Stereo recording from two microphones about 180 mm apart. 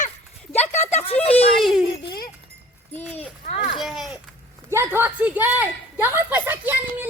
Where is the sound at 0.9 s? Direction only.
35° left (ahead or behind).